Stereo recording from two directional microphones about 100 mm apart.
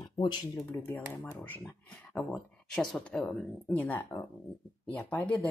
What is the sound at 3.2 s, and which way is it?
Speech, 15° left (ahead or behind).